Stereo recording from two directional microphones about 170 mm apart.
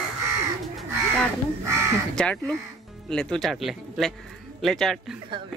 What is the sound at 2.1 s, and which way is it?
Speech, 5° left (ahead or behind).